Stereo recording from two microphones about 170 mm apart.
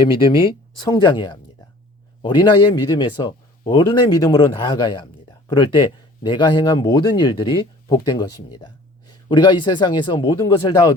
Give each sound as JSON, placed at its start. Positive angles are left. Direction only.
{"t": 0.0, "sound": "speech", "side_deg": 30}